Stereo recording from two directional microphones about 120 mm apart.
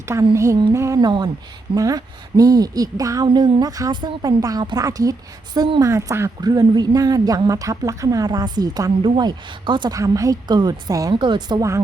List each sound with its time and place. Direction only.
0.3 s a woman's voice: 25° right (ahead or behind)
4.0 s a woman's voice: 45° right (ahead or behind)
4.4 s a woman's voice: 30° right (ahead or behind)